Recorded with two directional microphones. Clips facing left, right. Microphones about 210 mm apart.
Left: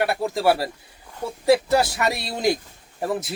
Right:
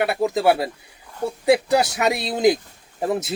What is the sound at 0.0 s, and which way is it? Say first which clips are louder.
Speech: right 2 dB; 20° right (ahead or behind).